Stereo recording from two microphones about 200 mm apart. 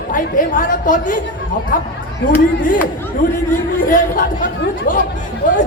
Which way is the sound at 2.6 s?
40° left (ahead or behind).